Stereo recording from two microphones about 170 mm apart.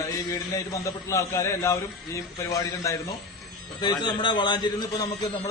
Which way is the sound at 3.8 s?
25° left (ahead or behind).